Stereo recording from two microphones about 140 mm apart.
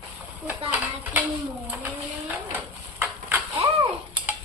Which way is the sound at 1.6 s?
10° right (ahead or behind).